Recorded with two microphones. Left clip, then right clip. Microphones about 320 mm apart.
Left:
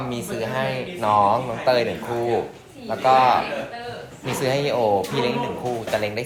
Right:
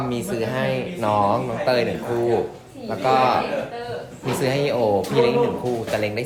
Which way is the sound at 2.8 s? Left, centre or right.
Centre.